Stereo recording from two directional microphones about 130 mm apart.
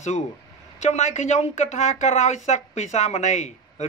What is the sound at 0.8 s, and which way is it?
Speech, 60° left (ahead or behind).